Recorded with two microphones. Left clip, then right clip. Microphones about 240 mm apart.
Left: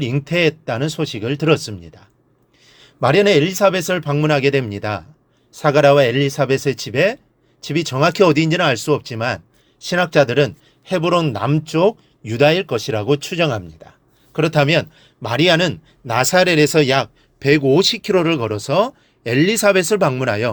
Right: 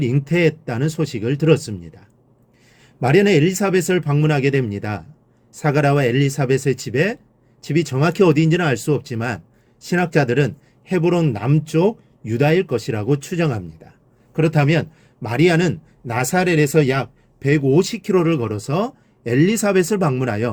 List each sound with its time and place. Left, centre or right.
0.0 s a man's voice: centre